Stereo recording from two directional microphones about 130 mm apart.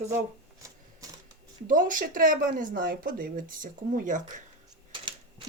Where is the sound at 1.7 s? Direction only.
90° right.